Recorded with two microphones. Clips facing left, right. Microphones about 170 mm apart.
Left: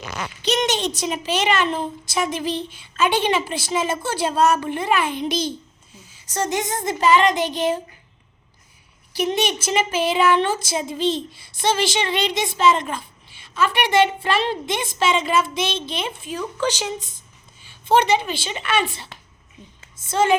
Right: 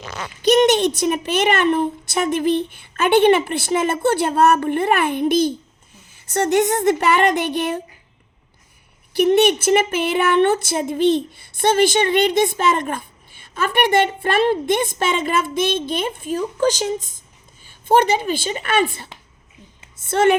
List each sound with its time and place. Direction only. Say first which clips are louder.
0.4 s a woman's voice: right 8 dB; 55° right (ahead or behind)
9.1 s a woman's voice: right 8 dB; 60° right (ahead or behind)
20.1 s a woman's voice: right 4 dB; 65° right (ahead or behind)